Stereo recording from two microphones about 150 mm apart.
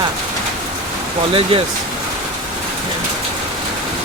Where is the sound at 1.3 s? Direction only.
35° right (ahead or behind).